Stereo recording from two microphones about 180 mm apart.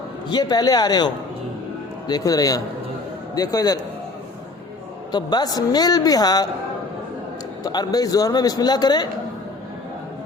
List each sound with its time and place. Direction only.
0.3 s a man's voice: 25° left (ahead or behind)
5.1 s a man's voice: 20° left (ahead or behind)
7.6 s a man's voice: 20° left (ahead or behind)